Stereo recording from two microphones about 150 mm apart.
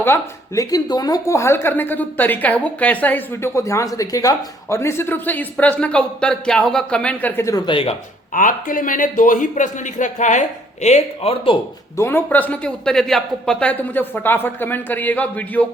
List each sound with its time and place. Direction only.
0.0 s a woman's voice: 20° left (ahead or behind); by 7.9 s 35° left (ahead or behind)
8.3 s a man's voice: 65° left (ahead or behind); by 11.5 s 40° left (ahead or behind)
11.9 s a woman's voice: 15° left (ahead or behind)